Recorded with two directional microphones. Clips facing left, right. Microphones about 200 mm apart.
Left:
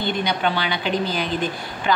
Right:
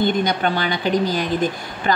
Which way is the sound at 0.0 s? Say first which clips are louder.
Right 4 dB; 45° right (ahead or behind).